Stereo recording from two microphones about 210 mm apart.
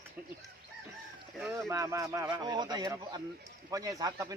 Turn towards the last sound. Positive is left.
turn(degrees=-15)  # may be behind; listen again after turning